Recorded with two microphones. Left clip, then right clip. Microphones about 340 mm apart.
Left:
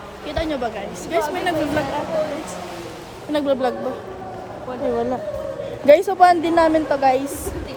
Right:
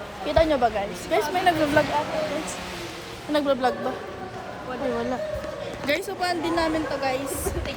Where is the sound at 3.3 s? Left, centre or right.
Centre.